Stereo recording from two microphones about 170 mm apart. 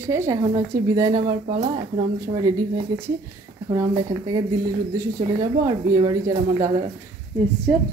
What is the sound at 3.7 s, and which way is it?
Speech, 20° right (ahead or behind).